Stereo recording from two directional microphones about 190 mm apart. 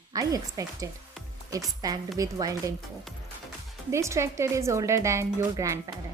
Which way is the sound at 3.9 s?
15° right (ahead or behind).